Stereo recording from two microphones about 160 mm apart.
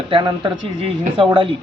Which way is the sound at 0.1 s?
30° right (ahead or behind).